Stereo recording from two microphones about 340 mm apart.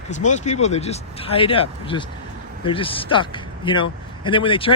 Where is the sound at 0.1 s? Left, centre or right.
Left.